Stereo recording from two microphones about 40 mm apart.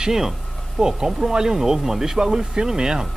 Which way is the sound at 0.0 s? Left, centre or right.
Centre.